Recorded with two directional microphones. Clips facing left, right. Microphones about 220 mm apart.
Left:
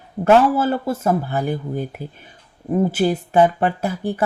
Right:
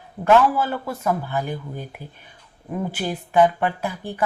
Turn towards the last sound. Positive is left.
turn(degrees=45)  # may be behind; listen again after turning